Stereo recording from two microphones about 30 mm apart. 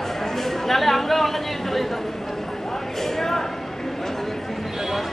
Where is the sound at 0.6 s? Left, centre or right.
Centre.